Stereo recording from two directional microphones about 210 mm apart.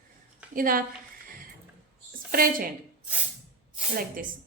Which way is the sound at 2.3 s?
45° right (ahead or behind).